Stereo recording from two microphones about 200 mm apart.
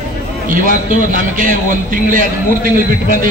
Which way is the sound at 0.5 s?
40° right (ahead or behind).